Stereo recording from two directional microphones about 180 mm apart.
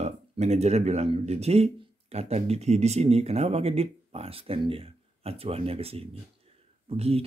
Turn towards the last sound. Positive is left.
turn(degrees=-35)  # may be behind; listen again after turning